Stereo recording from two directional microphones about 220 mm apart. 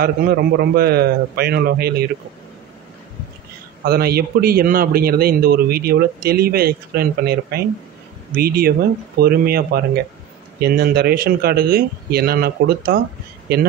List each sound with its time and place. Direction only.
0.0 s a man's voice: 45° right (ahead or behind)
3.8 s a man's voice: 45° right (ahead or behind)